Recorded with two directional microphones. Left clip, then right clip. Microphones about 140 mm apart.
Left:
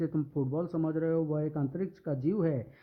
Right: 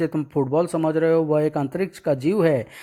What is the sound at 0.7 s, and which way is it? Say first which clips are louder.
Speech: right 11 dB; 55° right (ahead or behind).